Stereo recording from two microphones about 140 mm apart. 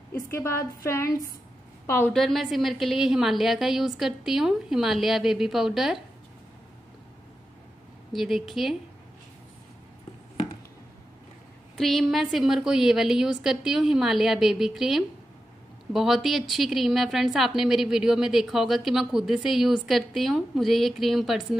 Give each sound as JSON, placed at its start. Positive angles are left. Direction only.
{"t": 0.1, "sound": "a woman's voice", "side_deg": 20}
{"t": 2.1, "sound": "a woman's voice", "side_deg": 0}
{"t": 8.1, "sound": "a woman's voice", "side_deg": 0}
{"t": 11.7, "sound": "a woman's voice", "side_deg": 0}